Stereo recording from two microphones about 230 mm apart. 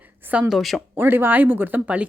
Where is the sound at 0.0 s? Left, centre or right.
Centre.